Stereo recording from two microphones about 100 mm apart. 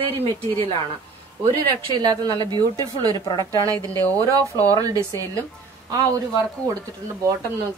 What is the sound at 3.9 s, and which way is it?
A woman's voice, 35° right (ahead or behind).